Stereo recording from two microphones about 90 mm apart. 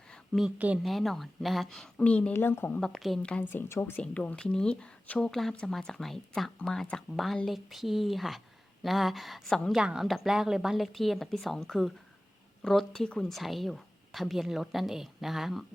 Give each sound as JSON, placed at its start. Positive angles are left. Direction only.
{"t": 0.1, "sound": "a sound", "side_deg": 0}
{"t": 0.8, "sound": "speech", "side_deg": 0}
{"t": 2.0, "sound": "speech", "side_deg": 15}
{"t": 2.3, "sound": "a woman's voice", "side_deg": 25}
{"t": 2.8, "sound": "speech", "side_deg": 5}
{"t": 3.5, "sound": "a woman's voice", "side_deg": 25}
{"t": 4.0, "sound": "speech", "side_deg": 15}